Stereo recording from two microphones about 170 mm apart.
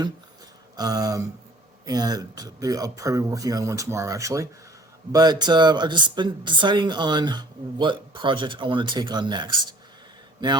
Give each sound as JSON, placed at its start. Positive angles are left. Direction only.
{"t": 0.8, "sound": "speech", "side_deg": -20}